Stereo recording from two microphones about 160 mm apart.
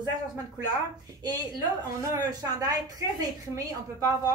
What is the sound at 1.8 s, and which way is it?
A woman's voice, 20° right (ahead or behind).